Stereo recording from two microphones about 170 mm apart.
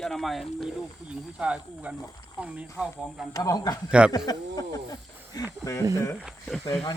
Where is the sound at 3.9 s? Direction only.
5° right (ahead or behind).